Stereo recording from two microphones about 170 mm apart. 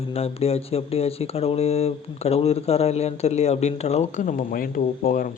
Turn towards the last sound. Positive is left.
turn(degrees=55)  # may be behind; listen again after turning